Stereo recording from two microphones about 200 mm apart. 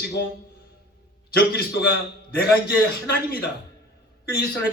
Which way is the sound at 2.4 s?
50° left (ahead or behind).